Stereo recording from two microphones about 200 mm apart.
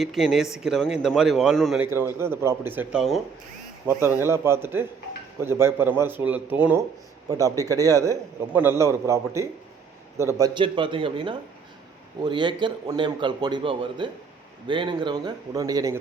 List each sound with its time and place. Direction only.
0.0 s speech: centre (ahead or behind)
1.9 s a man's voice: 10° right (ahead or behind)